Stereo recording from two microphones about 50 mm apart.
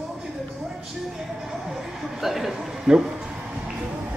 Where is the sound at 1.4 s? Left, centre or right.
Centre.